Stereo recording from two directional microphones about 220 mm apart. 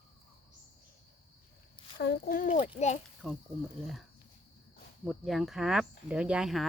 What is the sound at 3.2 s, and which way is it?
Speech, centre (ahead or behind).